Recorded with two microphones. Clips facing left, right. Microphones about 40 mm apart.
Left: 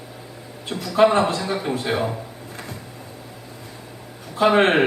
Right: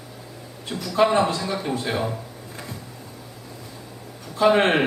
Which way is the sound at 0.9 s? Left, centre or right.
Left.